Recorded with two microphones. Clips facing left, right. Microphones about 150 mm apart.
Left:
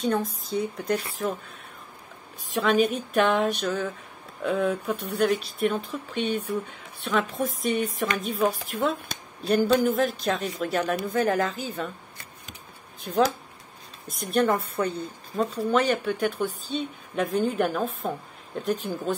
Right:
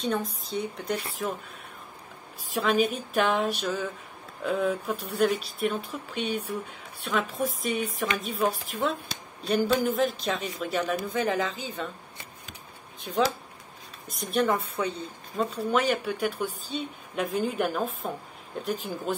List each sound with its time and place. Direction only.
0.0 s speech: centre (ahead or behind)
2.5 s speech: centre (ahead or behind)
13.1 s speech: centre (ahead or behind)